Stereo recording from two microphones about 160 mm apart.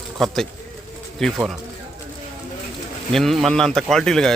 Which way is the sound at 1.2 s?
Centre (ahead or behind).